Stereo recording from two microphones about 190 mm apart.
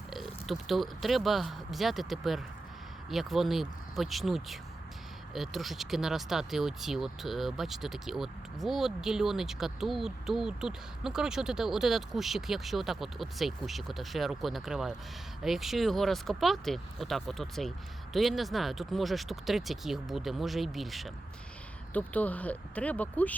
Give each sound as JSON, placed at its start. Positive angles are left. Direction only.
{"t": 0.1, "sound": "speech", "side_deg": 0}